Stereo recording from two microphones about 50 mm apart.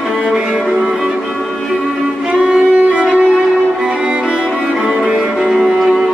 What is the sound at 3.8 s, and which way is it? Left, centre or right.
Violin, centre.